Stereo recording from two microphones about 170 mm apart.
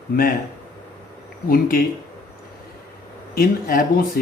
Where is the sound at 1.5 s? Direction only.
55° left (ahead or behind).